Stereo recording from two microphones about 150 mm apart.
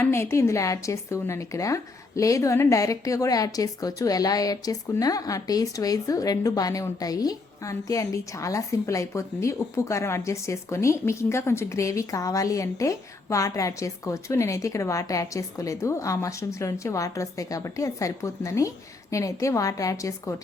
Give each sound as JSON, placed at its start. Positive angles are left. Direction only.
{"t": 0.0, "sound": "speech", "side_deg": 15}